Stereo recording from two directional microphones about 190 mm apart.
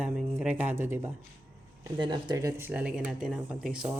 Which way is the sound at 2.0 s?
25° right (ahead or behind).